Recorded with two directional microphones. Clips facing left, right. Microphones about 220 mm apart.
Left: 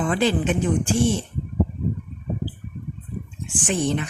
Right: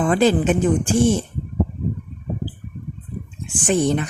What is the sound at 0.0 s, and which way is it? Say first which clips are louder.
Speech: right 5 dB; 45° right (ahead or behind).